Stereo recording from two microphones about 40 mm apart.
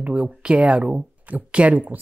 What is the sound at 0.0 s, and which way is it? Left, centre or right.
Speech, right.